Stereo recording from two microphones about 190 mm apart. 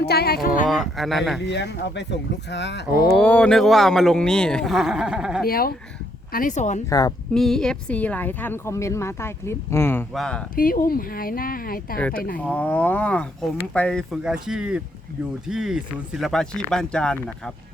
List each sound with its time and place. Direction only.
0.0 s speech: 55° left (ahead or behind)
0.4 s speech: 45° left (ahead or behind)
0.7 s speech: centre (ahead or behind)
1.4 s speech: 65° left (ahead or behind)
3.1 s speech: 5° left (ahead or behind)
5.5 s speech: 50° left (ahead or behind)
7.3 s speech: centre (ahead or behind)
10.5 s speech: 50° left (ahead or behind)
11.9 s speech: 5° left (ahead or behind)